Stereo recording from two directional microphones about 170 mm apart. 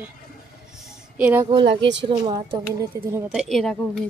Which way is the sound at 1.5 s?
30° right (ahead or behind).